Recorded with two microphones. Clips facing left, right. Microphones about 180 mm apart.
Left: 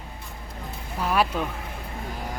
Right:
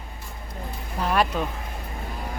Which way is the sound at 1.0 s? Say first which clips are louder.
Right 1 dB; 5° left (ahead or behind).